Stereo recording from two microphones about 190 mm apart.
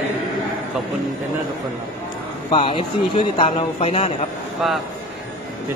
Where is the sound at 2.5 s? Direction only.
30° left (ahead or behind).